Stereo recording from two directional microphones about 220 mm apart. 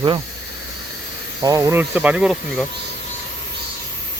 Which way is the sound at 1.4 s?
15° right (ahead or behind).